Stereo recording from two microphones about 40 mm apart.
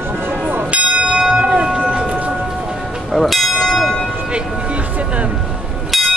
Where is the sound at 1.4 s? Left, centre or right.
Right.